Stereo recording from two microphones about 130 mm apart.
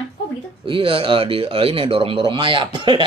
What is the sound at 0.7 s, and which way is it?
Speech, 45° right (ahead or behind).